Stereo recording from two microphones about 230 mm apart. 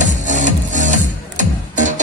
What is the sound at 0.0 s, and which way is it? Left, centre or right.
Music, right.